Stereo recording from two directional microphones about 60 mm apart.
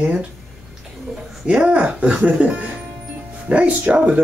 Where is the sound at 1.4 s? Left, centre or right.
Centre.